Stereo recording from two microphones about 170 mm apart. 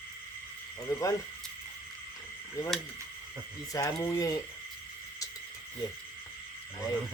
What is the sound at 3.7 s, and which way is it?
Speech, 20° left (ahead or behind).